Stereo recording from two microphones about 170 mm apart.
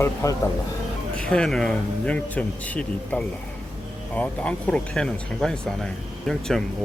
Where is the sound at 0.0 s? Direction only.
15° left (ahead or behind).